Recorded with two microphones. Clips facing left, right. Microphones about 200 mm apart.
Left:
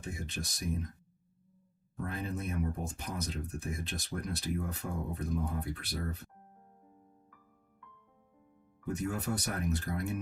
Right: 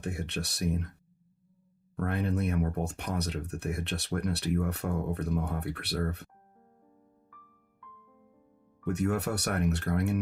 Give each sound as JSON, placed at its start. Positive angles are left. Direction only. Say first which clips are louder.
{"t": 0.0, "sound": "speech", "louder": "right 5 dB", "side_deg": -70}
{"t": 2.0, "sound": "speech", "louder": "right 7 dB", "side_deg": -70}
{"t": 8.8, "sound": "speech", "louder": "right 6 dB", "side_deg": -70}